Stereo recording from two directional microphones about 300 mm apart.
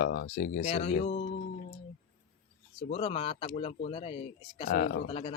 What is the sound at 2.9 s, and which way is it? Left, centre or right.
Speech, centre.